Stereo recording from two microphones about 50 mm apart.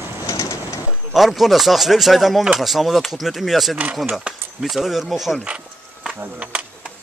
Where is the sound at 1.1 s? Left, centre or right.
Centre.